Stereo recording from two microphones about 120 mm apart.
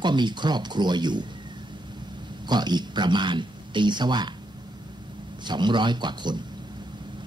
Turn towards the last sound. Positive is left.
turn(degrees=-40)  # may be behind; listen again after turning